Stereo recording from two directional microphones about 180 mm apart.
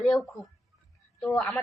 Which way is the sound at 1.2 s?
5° left (ahead or behind).